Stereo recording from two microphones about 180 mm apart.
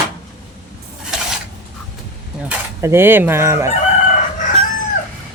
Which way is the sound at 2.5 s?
15° right (ahead or behind).